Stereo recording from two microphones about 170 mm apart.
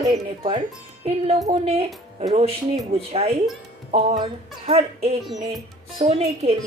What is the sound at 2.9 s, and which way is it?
Speech, 35° right (ahead or behind).